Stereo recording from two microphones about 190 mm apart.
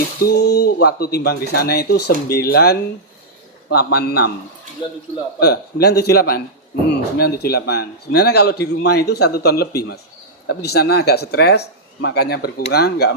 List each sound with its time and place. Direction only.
0.3 s speech: 55° left (ahead or behind)
5.4 s speech: 55° left (ahead or behind)